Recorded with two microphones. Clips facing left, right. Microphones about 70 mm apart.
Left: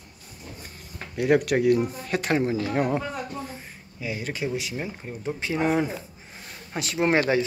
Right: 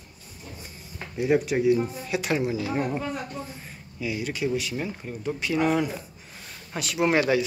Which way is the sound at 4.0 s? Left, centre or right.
Left.